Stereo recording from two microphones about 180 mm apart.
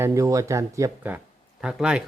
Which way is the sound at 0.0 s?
15° right (ahead or behind).